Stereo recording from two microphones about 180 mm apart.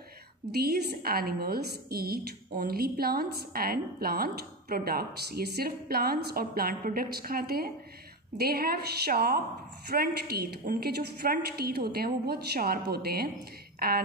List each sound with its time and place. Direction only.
0.5 s a woman's voice: 60° right (ahead or behind)